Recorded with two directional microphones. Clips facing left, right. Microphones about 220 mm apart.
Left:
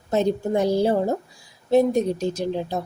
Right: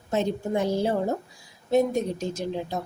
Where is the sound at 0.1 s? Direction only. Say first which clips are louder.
Left 4 dB; 40° left (ahead or behind).